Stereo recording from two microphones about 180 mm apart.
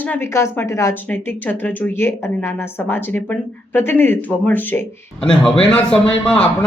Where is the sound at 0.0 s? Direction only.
10° left (ahead or behind).